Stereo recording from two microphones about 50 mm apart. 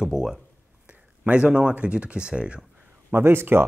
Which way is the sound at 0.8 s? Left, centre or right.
Right.